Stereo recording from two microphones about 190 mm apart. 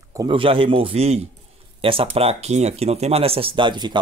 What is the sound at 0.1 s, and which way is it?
Speech, 25° right (ahead or behind).